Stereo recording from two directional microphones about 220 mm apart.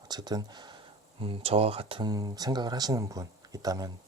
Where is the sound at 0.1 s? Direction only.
20° right (ahead or behind).